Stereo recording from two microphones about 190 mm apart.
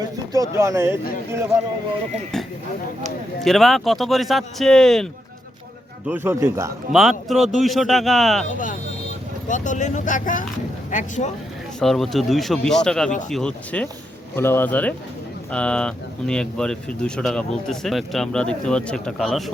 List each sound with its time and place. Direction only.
0.0 s speech: 15° right (ahead or behind)
3.4 s speech: centre (ahead or behind)
6.1 s speech: 10° right (ahead or behind)
6.9 s speech: centre (ahead or behind)
8.4 s speech: 45° left (ahead or behind)
11.8 s a man's voice: centre (ahead or behind)